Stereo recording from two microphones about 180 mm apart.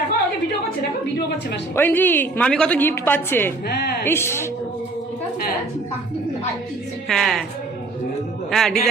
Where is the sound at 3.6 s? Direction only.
60° left (ahead or behind).